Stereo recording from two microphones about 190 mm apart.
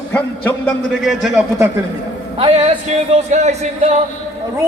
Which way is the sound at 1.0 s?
5° right (ahead or behind).